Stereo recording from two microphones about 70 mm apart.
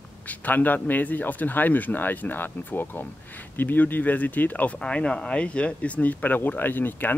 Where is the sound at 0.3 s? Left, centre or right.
Left.